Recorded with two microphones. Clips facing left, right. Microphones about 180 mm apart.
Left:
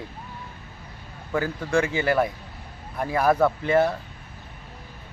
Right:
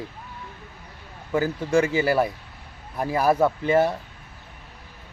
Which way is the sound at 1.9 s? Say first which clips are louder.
Right 1 dB; 5° right (ahead or behind).